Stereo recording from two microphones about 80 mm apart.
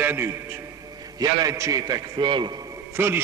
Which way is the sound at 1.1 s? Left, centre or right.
Right.